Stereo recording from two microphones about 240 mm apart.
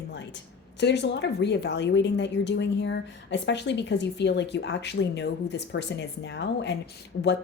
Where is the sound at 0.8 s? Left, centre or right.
Left.